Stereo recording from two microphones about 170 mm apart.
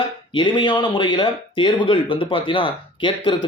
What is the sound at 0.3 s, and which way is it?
Speech, 30° left (ahead or behind).